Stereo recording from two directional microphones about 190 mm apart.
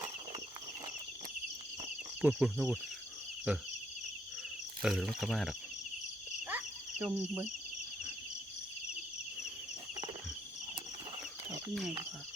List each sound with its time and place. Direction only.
2.2 s speech: 5° right (ahead or behind)
4.8 s speech: 5° right (ahead or behind)
7.0 s speech: 5° right (ahead or behind)
11.7 s speech: centre (ahead or behind)